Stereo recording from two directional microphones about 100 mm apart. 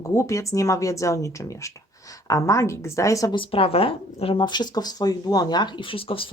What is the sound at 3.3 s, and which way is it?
A woman's voice, 65° left (ahead or behind).